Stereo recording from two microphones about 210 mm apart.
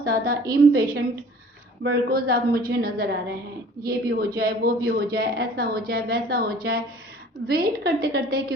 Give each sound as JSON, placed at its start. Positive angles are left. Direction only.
{"t": 0.0, "sound": "a woman's voice", "side_deg": -45}